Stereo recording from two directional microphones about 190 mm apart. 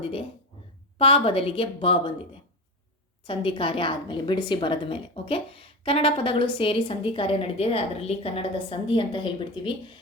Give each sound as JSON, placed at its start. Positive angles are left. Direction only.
{"t": 0.0, "sound": "a woman's voice", "side_deg": 30}
{"t": 3.2, "sound": "a woman's voice", "side_deg": 25}